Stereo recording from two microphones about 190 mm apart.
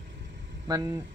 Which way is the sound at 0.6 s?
20° right (ahead or behind).